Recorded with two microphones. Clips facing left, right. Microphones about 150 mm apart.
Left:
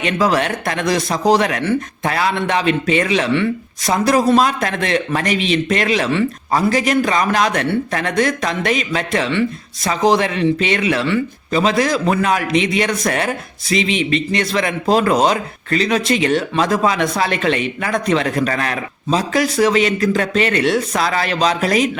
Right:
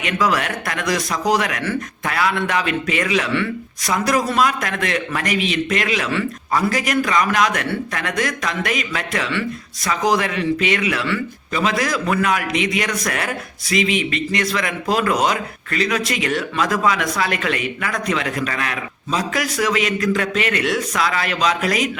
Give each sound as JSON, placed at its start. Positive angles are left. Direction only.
{"t": 0.0, "sound": "speech", "side_deg": 30}